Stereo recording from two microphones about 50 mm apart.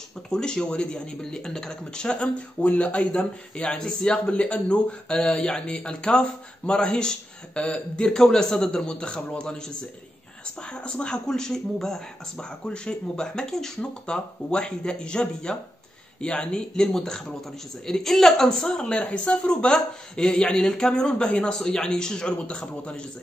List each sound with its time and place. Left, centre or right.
0.3 s speech: centre